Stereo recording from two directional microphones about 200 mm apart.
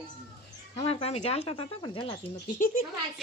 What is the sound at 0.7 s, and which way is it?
Speech, 30° left (ahead or behind).